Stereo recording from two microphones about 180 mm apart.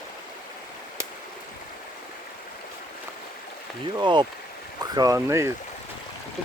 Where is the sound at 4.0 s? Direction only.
25° right (ahead or behind).